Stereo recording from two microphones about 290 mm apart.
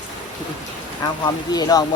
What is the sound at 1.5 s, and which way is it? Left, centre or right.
Speech, centre.